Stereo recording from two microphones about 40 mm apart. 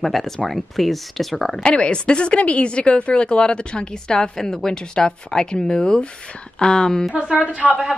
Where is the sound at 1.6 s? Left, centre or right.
Left.